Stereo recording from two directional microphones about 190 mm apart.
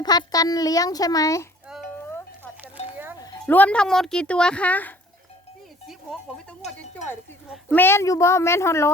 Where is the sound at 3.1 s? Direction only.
20° left (ahead or behind).